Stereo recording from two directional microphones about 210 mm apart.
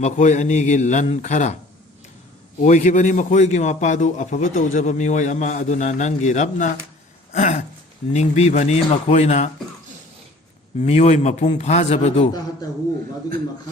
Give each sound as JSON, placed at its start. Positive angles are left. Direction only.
{"t": 0.0, "sound": "a man's voice", "side_deg": 35}
{"t": 2.6, "sound": "a man's voice", "side_deg": 35}
{"t": 10.8, "sound": "a man's voice", "side_deg": 30}